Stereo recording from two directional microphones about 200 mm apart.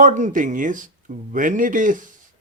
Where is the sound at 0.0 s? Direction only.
40° right (ahead or behind).